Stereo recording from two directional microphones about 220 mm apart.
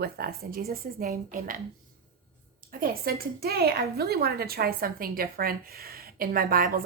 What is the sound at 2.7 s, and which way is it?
Speech, 40° right (ahead or behind).